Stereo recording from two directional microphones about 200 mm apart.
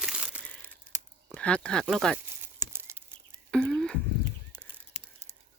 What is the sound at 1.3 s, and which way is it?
Speech, 5° left (ahead or behind).